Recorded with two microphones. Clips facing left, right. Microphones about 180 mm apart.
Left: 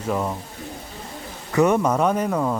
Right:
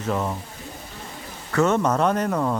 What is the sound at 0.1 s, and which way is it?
Speech, 5° left (ahead or behind).